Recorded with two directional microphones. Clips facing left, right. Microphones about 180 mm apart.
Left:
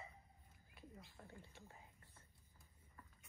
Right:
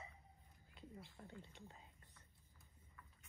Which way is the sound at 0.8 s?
20° right (ahead or behind).